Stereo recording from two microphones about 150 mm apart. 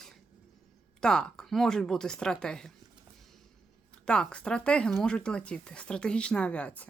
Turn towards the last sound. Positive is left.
turn(degrees=10)  # may be behind; listen again after turning